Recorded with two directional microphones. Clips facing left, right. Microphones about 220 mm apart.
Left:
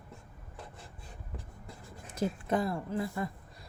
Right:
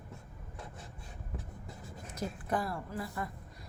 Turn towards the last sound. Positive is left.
turn(degrees=25)  # may be behind; listen again after turning